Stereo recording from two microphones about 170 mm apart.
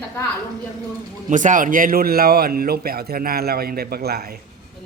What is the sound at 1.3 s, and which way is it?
Speech, 50° right (ahead or behind).